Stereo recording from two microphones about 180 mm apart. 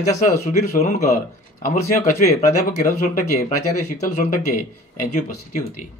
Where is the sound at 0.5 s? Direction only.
45° left (ahead or behind).